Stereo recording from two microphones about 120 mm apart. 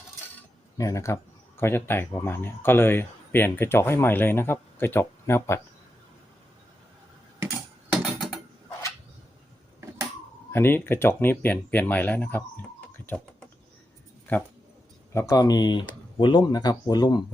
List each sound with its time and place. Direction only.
0.8 s speech: 25° left (ahead or behind)
8.0 s a sound: centre (ahead or behind)
10.5 s speech: 20° left (ahead or behind)
15.1 s speech: 25° left (ahead or behind)